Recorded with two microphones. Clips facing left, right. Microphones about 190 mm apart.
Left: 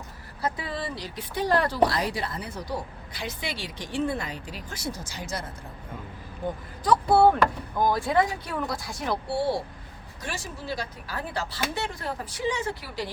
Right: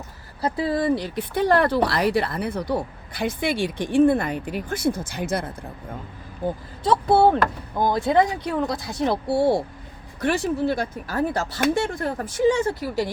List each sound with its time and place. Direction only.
0.4 s speech: 30° right (ahead or behind); by 5.5 s 55° right (ahead or behind)
6.4 s speech: 35° right (ahead or behind)
9.3 s speech: 50° right (ahead or behind)
10.2 s speech: 60° right (ahead or behind); by 13.1 s 45° right (ahead or behind)